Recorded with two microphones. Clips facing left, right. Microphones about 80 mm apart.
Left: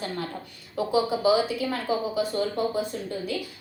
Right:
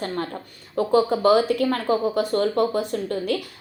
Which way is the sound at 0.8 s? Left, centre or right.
Right.